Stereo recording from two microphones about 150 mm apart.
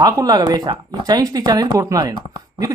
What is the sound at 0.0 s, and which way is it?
Speech, 25° right (ahead or behind).